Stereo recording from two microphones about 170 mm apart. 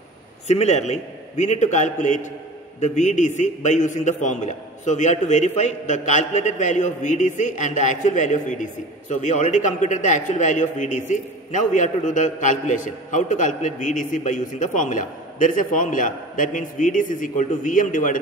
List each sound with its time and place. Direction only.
0.5 s a man's voice: 40° left (ahead or behind)